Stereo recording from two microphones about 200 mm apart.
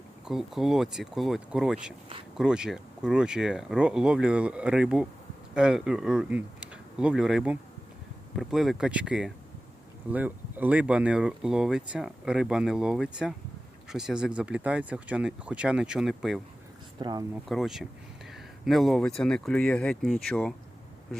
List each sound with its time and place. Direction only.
0.3 s speech: centre (ahead or behind)
17.0 s speech: 20° right (ahead or behind)
17.5 s speech: centre (ahead or behind)